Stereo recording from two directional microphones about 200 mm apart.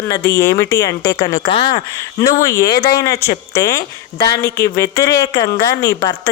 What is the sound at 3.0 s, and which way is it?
Speech, 15° left (ahead or behind).